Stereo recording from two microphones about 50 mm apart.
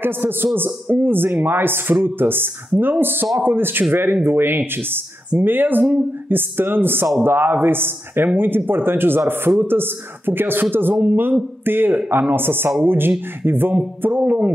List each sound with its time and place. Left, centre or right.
0.0 s a man's voice: right